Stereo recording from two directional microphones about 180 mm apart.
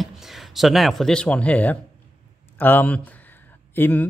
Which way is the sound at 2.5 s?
10° left (ahead or behind).